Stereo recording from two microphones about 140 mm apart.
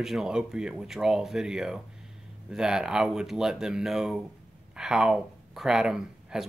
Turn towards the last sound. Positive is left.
turn(degrees=-5)  # may be behind; listen again after turning